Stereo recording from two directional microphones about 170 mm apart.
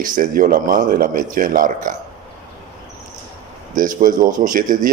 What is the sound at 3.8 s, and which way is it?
Speech, 50° right (ahead or behind).